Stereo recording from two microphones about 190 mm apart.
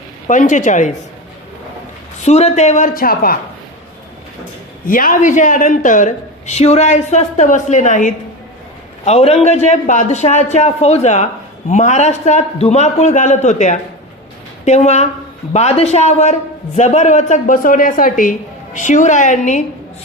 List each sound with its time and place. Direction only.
0.3 s a man's voice: 40° left (ahead or behind)
2.2 s a man's voice: 35° left (ahead or behind)
4.9 s a man's voice: 50° left (ahead or behind)